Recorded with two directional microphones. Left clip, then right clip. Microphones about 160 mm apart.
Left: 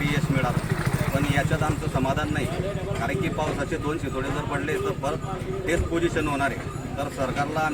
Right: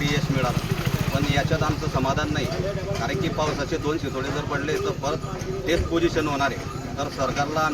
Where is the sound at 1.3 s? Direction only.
20° left (ahead or behind).